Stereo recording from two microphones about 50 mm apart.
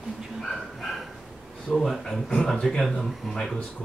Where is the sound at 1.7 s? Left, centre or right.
Centre.